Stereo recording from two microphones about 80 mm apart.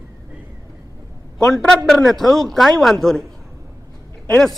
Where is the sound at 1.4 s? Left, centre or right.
Centre.